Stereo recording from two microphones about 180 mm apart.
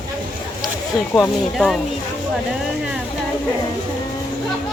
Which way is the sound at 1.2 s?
5° left (ahead or behind).